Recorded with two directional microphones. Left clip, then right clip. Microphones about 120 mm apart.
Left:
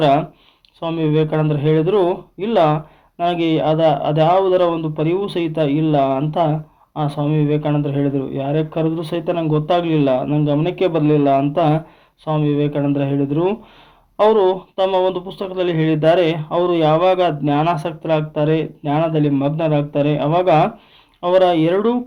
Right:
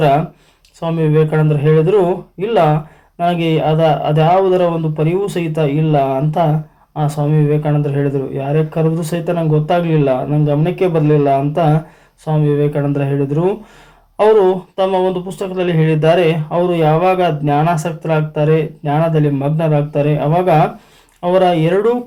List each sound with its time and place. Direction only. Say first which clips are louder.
0.0 s speech: right 2 dB; 35° left (ahead or behind)